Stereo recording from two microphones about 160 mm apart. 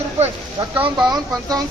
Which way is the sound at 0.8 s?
25° right (ahead or behind).